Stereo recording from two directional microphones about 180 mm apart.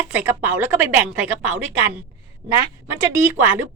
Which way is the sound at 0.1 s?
10° right (ahead or behind).